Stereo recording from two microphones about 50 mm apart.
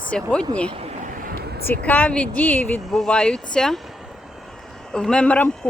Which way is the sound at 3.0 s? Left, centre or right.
Centre.